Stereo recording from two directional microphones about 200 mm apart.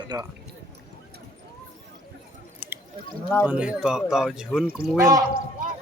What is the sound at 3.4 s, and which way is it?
Speech, 5° right (ahead or behind).